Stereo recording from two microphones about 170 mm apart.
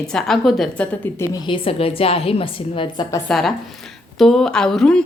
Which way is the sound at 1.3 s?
30° left (ahead or behind).